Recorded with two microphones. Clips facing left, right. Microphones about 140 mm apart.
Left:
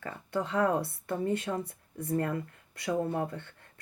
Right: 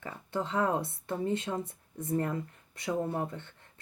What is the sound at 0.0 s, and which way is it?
Speech, 20° right (ahead or behind).